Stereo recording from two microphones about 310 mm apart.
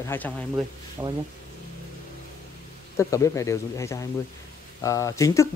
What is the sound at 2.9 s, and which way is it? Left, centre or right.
Speech, centre.